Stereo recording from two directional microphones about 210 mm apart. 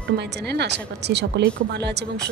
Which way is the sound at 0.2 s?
55° right (ahead or behind).